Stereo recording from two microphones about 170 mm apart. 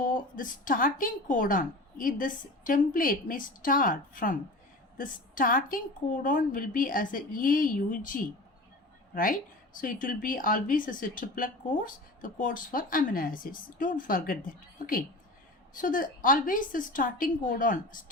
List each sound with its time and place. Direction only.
0.0 s speech: 55° left (ahead or behind)
9.7 s speech: 50° left (ahead or behind)
15.7 s speech: 50° left (ahead or behind)